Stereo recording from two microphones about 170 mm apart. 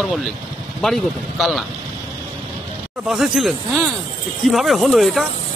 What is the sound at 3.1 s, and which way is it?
Speech, centre (ahead or behind).